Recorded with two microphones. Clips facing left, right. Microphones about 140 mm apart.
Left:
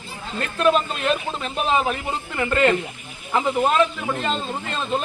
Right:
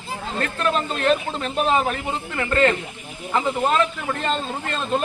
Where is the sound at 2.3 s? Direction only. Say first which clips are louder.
Even; 15° left (ahead or behind).